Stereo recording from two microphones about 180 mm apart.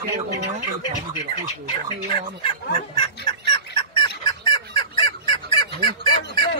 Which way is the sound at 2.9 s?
25° left (ahead or behind).